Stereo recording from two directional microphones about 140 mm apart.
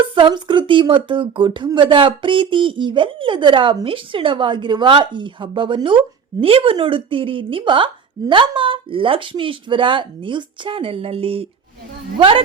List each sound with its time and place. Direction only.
0.0 s speech: 35° right (ahead or behind)